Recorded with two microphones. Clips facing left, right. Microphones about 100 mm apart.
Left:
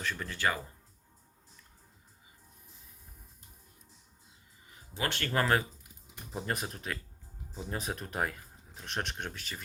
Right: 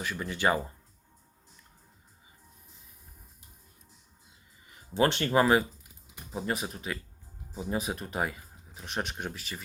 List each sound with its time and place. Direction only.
0.0 s speech: 10° right (ahead or behind)
4.9 s speech: 20° right (ahead or behind)
6.3 s speech: centre (ahead or behind)